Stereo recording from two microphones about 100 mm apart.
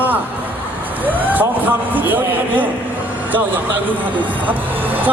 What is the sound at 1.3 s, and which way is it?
Speech, 15° right (ahead or behind).